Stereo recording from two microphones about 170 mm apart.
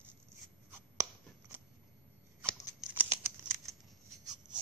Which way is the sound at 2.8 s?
10° right (ahead or behind).